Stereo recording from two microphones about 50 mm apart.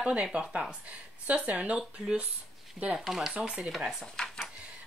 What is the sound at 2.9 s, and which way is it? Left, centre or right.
Speech, centre.